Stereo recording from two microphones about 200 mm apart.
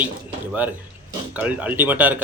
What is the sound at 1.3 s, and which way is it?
Speech, 5° right (ahead or behind).